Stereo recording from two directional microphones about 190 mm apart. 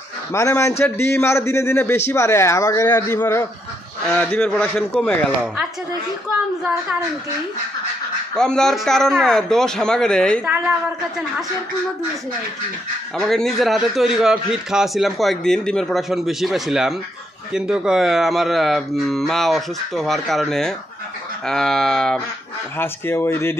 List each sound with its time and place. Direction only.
0.3 s a man's voice: 15° left (ahead or behind)
8.4 s a man's voice: 5° left (ahead or behind)
13.3 s a man's voice: centre (ahead or behind)